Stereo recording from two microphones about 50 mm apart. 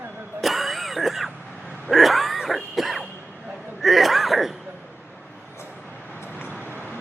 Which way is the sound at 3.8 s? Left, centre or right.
Centre.